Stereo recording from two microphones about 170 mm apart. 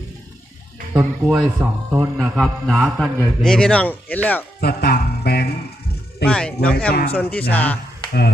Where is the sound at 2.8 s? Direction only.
5° right (ahead or behind).